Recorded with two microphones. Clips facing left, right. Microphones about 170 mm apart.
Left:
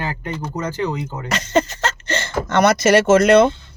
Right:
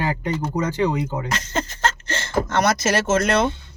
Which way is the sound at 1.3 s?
75° left (ahead or behind).